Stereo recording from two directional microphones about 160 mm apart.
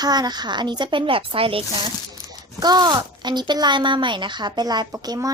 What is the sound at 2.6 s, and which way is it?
Speech, 25° right (ahead or behind).